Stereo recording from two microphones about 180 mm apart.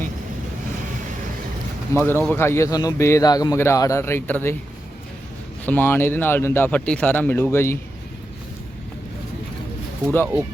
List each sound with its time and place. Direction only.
1.9 s a man's voice: 15° left (ahead or behind)
5.6 s a man's voice: 10° left (ahead or behind)